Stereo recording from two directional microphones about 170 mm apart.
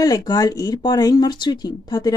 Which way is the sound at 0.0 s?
20° left (ahead or behind).